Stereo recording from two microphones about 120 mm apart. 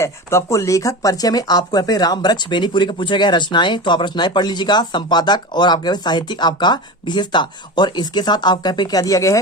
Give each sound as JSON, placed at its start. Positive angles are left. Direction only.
{"t": 0.0, "sound": "speech", "side_deg": 25}